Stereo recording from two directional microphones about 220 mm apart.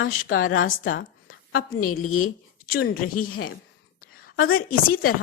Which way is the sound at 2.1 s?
75° left (ahead or behind).